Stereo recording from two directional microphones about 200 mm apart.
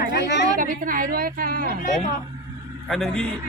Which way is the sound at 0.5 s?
40° right (ahead or behind).